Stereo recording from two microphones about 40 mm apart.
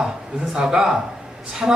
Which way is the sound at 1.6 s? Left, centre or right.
Centre.